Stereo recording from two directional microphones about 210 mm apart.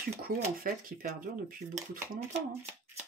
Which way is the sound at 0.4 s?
40° right (ahead or behind).